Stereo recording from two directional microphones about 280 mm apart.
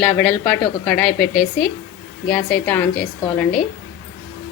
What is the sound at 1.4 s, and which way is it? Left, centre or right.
Speech, left.